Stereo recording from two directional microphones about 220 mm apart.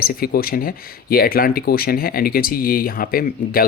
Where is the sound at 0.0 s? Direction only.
40° left (ahead or behind).